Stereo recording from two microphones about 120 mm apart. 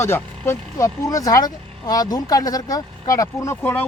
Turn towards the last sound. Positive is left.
turn(degrees=15)  # may be behind; listen again after turning